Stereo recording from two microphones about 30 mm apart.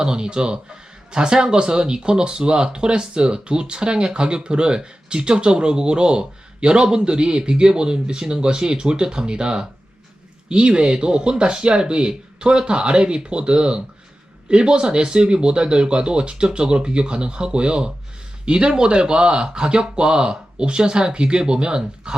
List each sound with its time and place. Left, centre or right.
0.0 s speech: right